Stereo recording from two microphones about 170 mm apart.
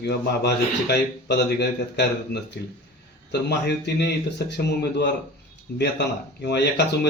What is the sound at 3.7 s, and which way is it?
Speech, 80° left.